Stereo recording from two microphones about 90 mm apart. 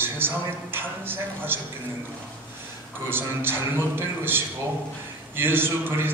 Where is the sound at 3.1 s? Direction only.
25° right (ahead or behind).